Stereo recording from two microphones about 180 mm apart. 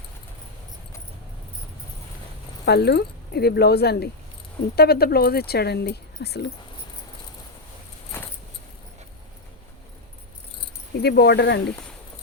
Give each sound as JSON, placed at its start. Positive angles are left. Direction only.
{"t": 2.6, "sound": "speech", "side_deg": 65}
{"t": 8.1, "sound": "keys jangling", "side_deg": 15}
{"t": 11.0, "sound": "speech", "side_deg": 65}